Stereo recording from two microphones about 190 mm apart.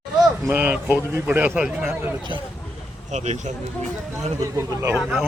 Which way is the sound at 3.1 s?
35° right (ahead or behind).